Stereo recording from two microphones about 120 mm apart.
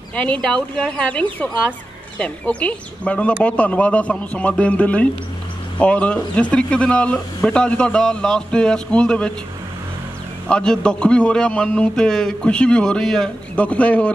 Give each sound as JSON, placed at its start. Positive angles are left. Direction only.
{"t": 0.1, "sound": "a man's voice", "side_deg": 10}
{"t": 10.5, "sound": "a man's voice", "side_deg": 5}